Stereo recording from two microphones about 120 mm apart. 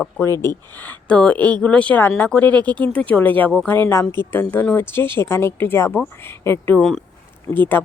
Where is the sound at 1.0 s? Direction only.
10° left (ahead or behind).